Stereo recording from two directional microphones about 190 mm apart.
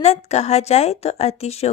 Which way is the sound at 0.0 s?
35° left (ahead or behind).